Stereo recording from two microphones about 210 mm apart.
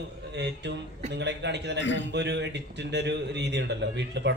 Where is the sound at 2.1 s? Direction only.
55° right (ahead or behind).